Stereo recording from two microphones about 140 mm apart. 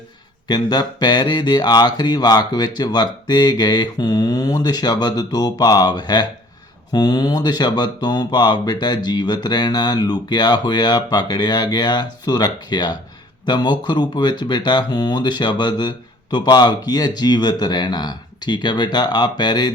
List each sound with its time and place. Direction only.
0.4 s speech: 30° left (ahead or behind)